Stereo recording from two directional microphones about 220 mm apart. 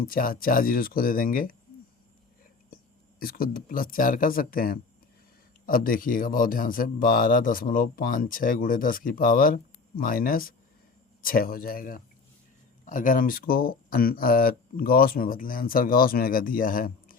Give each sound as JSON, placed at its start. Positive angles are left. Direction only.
{"t": 0.0, "sound": "speech", "side_deg": 40}
{"t": 3.2, "sound": "speech", "side_deg": 40}